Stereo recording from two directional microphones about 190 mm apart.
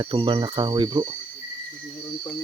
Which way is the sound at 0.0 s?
25° right (ahead or behind).